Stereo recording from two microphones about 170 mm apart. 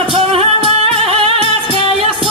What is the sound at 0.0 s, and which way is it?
Music, 35° right (ahead or behind).